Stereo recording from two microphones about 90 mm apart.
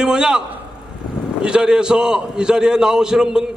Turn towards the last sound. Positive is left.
turn(degrees=-5)  # may be behind; listen again after turning